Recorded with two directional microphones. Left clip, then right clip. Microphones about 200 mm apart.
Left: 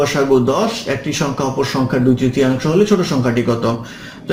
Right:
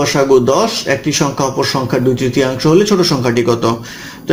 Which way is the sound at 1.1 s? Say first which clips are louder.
Right 4 dB; 45° right (ahead or behind).